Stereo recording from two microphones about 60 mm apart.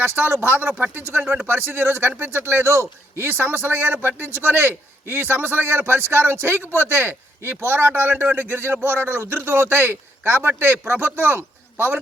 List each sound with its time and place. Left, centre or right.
0.0 s a man's voice: right